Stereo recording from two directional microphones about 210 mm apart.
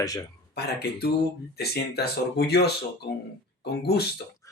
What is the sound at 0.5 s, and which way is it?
Speech, 50° left (ahead or behind).